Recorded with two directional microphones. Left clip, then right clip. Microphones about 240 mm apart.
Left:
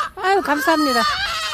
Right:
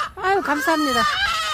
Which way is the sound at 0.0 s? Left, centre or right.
Centre.